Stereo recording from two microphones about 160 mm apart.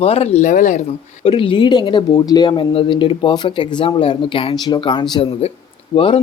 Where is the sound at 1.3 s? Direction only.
30° left (ahead or behind).